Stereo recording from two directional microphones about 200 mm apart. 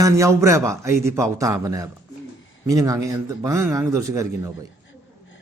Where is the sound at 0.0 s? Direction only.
15° right (ahead or behind).